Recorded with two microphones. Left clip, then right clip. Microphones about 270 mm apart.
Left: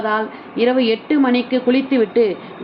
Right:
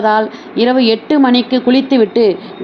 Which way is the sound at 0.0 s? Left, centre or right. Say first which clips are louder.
Right 7 dB; right.